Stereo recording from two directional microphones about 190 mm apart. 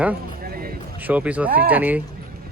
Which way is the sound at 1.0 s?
10° right (ahead or behind).